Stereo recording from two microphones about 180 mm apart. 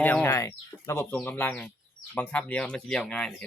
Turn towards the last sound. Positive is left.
turn(degrees=5)  # may be behind; listen again after turning